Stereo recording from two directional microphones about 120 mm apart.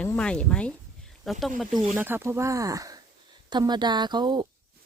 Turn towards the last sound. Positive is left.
turn(degrees=-40)  # may be behind; listen again after turning